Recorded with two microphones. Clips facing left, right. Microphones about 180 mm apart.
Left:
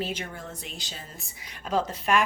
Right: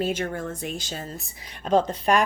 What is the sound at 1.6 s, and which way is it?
Speech, 30° right (ahead or behind).